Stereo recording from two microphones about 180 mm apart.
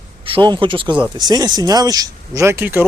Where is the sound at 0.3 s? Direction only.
30° right (ahead or behind).